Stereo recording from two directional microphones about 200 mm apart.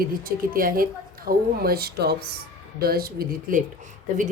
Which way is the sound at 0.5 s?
45° right (ahead or behind).